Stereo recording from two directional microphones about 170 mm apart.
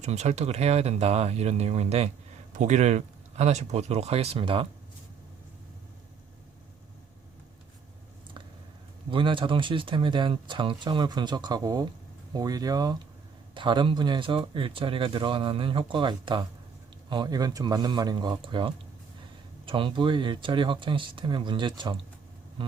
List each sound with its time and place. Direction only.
0.0 s speech: 40° right (ahead or behind)
9.0 s speech: 30° right (ahead or behind)